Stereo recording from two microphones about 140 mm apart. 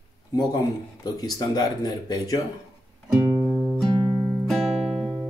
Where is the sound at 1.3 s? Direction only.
30° left (ahead or behind).